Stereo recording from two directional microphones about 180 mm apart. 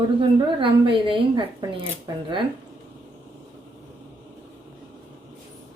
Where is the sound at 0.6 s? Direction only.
30° right (ahead or behind).